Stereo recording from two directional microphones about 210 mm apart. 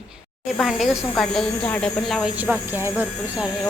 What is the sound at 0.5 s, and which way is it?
Speech, centre (ahead or behind).